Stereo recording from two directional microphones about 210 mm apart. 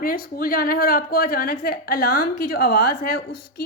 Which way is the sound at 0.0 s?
45° left (ahead or behind).